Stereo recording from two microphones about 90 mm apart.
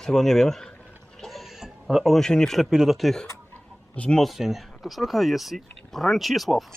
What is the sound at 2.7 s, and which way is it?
Speech, 5° right (ahead or behind).